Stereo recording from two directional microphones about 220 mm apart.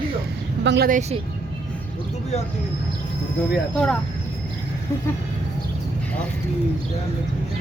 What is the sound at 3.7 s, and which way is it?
Speech, 5° left (ahead or behind).